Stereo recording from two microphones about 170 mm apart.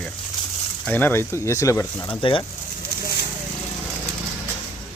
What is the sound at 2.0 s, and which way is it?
Speech, 30° left (ahead or behind).